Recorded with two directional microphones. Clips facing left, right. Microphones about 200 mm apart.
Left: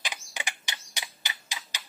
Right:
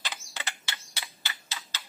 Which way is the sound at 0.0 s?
15° left (ahead or behind).